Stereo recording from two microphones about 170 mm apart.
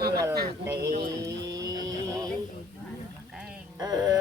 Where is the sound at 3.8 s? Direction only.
20° right (ahead or behind).